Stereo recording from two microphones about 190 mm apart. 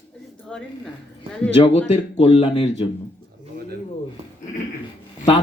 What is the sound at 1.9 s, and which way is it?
Speech, 30° left (ahead or behind).